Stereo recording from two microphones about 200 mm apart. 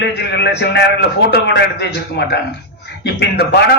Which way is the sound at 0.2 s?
55° left (ahead or behind).